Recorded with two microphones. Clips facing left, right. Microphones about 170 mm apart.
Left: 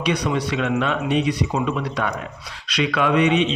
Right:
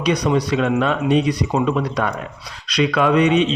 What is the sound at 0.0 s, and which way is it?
Speech, 40° right (ahead or behind).